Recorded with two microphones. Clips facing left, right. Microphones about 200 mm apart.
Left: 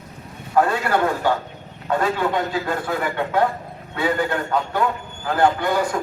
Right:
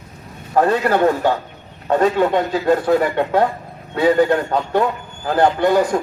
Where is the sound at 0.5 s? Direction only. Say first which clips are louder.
Right 3 dB; 40° right (ahead or behind).